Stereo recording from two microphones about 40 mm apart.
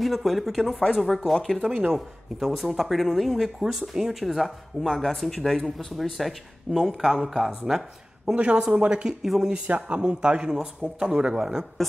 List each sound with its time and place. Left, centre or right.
0.0 s speech: centre
8.4 s a man's voice: right
9.2 s speech: centre
9.5 s a man's voice: right